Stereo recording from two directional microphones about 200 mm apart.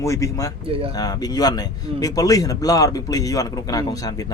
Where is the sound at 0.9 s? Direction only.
20° left (ahead or behind).